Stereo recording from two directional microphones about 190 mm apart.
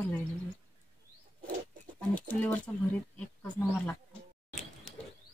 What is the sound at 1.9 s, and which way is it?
Speech, 5° left (ahead or behind).